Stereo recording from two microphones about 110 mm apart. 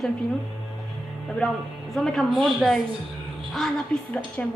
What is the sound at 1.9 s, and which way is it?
A woman's voice, 5° left (ahead or behind).